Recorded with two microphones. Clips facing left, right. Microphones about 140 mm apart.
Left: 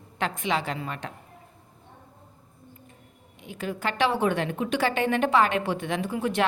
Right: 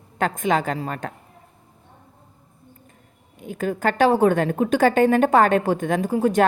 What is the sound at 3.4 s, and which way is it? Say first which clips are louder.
A woman's voice: right 7 dB; 45° right (ahead or behind).